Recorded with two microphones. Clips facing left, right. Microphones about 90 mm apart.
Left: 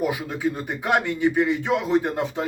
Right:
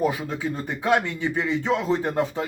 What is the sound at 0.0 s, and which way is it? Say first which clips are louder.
Speech: even; 15° left (ahead or behind).